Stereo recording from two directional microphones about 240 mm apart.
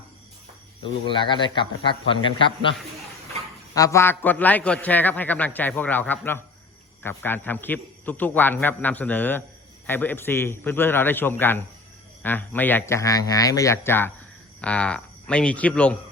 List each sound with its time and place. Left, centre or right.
0.8 s a man's voice: left
3.8 s a man's voice: centre